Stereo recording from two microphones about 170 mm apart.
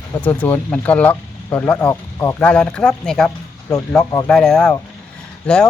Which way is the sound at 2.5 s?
5° left (ahead or behind).